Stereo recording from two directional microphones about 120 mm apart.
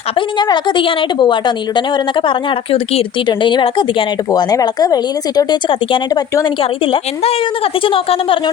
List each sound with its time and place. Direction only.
0.2 s a woman's voice: 40° left (ahead or behind)
4.3 s a woman's voice: 30° left (ahead or behind); by 8.4 s 50° left (ahead or behind)